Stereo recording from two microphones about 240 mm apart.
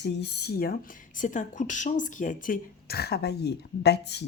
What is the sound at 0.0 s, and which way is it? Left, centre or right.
Speech, left.